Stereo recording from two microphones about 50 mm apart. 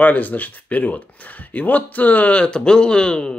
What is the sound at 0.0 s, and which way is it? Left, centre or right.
Speech, left.